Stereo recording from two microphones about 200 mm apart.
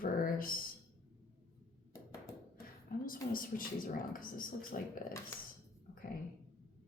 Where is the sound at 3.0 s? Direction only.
45° left (ahead or behind).